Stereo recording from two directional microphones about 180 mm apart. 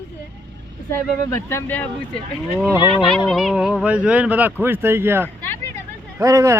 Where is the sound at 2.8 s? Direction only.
30° left (ahead or behind).